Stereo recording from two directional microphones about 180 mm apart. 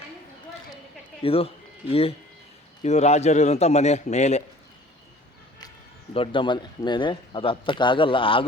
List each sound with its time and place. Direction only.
1.2 s a man's voice: 30° left (ahead or behind)
6.1 s speech: 30° left (ahead or behind)